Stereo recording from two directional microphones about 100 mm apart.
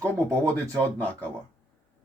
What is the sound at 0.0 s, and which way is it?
Speech, 30° right (ahead or behind).